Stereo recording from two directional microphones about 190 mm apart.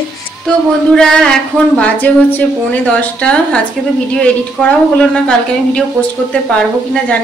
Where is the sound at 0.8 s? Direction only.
5° left (ahead or behind).